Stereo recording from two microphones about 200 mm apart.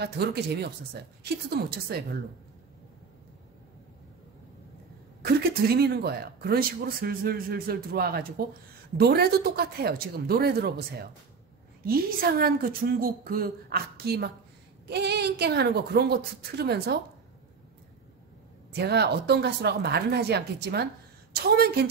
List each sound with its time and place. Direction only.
0.0 s speech: 55° right (ahead or behind)
5.2 s speech: 50° right (ahead or behind)
18.7 s speech: 55° right (ahead or behind)